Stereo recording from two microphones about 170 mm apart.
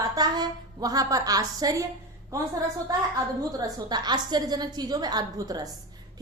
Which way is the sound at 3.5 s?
20° right (ahead or behind).